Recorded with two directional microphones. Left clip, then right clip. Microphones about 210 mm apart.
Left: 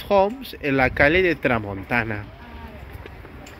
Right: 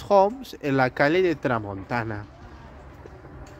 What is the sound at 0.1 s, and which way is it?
Speech, 20° right (ahead or behind).